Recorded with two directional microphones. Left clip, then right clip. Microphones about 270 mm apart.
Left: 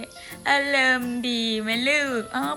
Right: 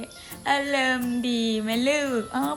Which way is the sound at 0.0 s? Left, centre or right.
Centre.